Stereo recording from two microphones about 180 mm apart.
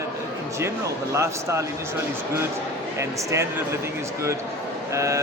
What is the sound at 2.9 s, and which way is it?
Speech, 15° right (ahead or behind).